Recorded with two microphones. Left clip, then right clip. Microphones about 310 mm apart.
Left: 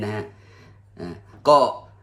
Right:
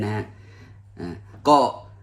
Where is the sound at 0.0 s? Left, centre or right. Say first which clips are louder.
Even; centre.